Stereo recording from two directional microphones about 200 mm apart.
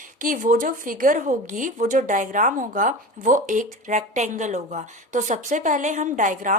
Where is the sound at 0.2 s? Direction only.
40° right (ahead or behind).